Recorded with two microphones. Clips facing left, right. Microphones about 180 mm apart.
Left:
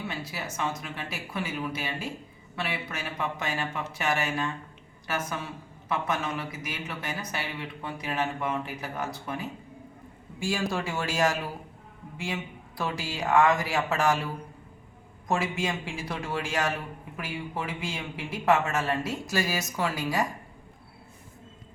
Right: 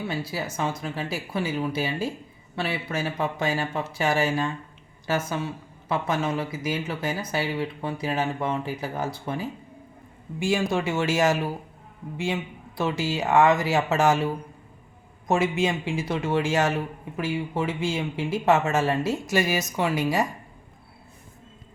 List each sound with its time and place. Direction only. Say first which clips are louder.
0.1 s speech: right 6 dB; 30° right (ahead or behind)
5.9 s a man's voice: right 4 dB; 30° right (ahead or behind)
15.3 s a man's voice: right 6 dB; 25° right (ahead or behind)